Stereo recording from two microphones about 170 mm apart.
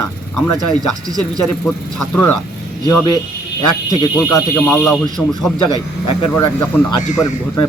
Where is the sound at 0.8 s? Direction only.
20° right (ahead or behind).